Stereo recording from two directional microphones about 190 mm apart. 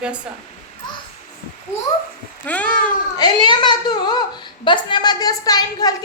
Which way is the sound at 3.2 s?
20° left (ahead or behind).